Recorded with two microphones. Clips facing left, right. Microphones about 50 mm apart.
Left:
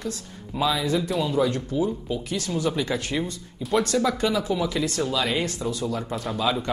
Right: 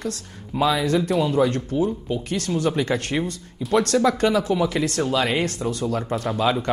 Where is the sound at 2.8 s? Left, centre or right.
Right.